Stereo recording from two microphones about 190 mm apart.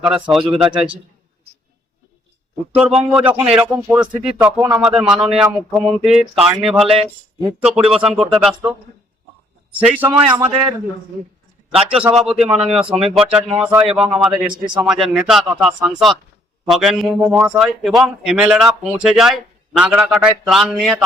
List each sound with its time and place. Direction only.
0.0 s speech: 5° right (ahead or behind)
2.7 s speech: 5° right (ahead or behind)
9.7 s speech: 5° right (ahead or behind)
11.9 s speech: 5° right (ahead or behind)
14.6 s a man's voice: 25° right (ahead or behind)
14.8 s speech: centre (ahead or behind)